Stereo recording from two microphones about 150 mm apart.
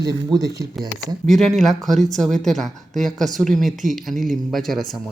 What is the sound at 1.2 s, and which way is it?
Speech, centre (ahead or behind).